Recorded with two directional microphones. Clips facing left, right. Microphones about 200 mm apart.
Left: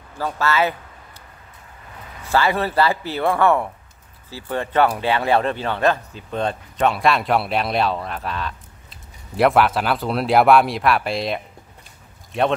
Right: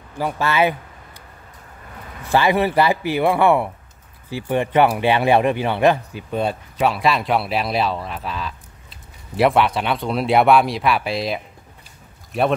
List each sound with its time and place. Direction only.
0.2 s speech: 15° right (ahead or behind)
2.3 s speech: 15° right (ahead or behind)